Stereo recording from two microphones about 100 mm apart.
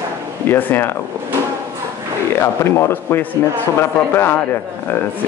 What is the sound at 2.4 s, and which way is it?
Speech, 25° left (ahead or behind).